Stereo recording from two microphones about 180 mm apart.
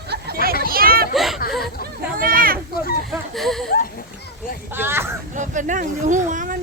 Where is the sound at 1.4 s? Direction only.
55° left (ahead or behind).